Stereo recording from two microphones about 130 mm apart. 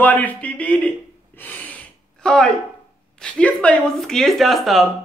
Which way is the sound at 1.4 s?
15° left (ahead or behind).